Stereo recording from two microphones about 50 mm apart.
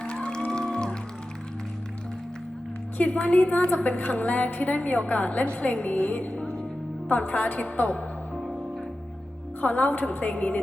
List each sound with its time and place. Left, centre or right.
0.0 s music: centre
3.0 s a woman's voice: left
9.6 s a woman's voice: left